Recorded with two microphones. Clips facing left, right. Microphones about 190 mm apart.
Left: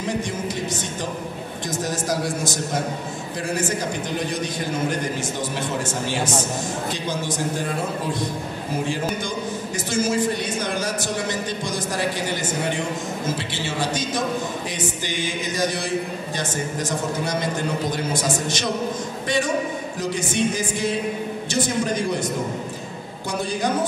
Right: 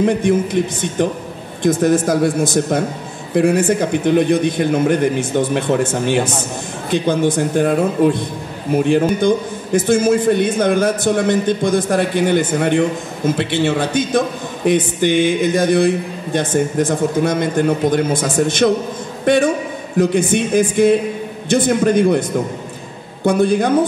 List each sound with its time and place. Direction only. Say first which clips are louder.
0.0 s a man's voice: right 11 dB; 55° right (ahead or behind)
23.2 s a man's voice: right 11 dB; 55° right (ahead or behind)